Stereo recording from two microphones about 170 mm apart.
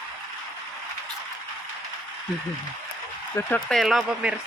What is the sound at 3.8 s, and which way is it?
Speech, centre (ahead or behind).